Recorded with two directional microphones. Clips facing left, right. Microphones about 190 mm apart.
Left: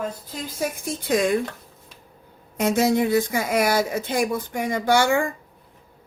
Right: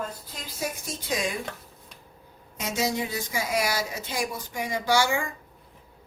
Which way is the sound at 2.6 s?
55° left (ahead or behind).